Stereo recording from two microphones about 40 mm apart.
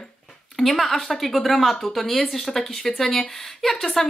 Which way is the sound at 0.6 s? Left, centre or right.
Centre.